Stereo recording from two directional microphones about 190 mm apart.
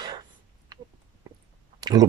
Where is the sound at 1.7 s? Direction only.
20° right (ahead or behind).